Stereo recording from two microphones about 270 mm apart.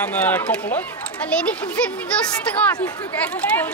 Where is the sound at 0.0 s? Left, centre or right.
Centre.